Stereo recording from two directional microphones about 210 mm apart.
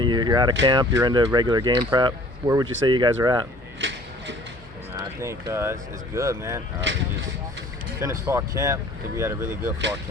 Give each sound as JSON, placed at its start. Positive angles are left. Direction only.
{"t": 0.0, "sound": "speech", "side_deg": -20}
{"t": 3.8, "sound": "a sound", "side_deg": -60}
{"t": 4.9, "sound": "speech", "side_deg": -15}
{"t": 8.0, "sound": "speech", "side_deg": -15}